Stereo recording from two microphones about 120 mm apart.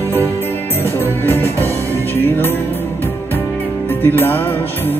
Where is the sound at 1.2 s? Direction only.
20° left (ahead or behind).